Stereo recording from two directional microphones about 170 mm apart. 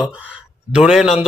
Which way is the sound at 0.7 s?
5° right (ahead or behind).